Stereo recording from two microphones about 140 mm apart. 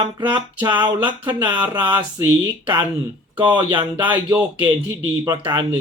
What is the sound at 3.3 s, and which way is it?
Speech, 35° right (ahead or behind).